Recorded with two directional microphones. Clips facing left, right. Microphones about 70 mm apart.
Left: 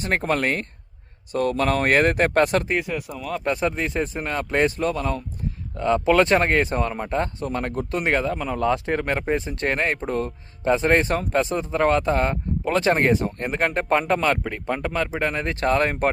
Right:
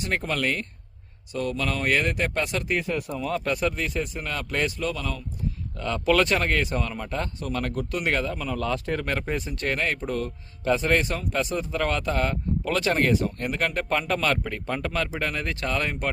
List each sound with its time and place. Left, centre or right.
0.0 s speech: left
2.8 s speech: centre
3.4 s speech: left
5.7 s speech: left